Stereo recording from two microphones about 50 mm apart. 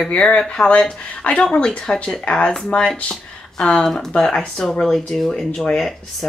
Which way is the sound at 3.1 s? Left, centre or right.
Centre.